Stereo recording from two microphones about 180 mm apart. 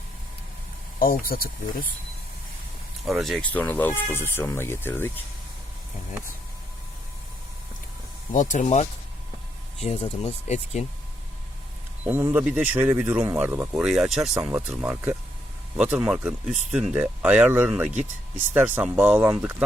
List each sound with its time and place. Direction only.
0.9 s speech: 55° left (ahead or behind)
3.1 s speech: centre (ahead or behind)
8.3 s speech: 45° left (ahead or behind)
12.0 s speech: 10° right (ahead or behind)